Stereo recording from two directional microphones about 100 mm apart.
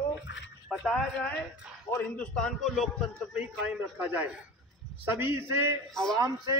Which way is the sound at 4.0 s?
15° right (ahead or behind).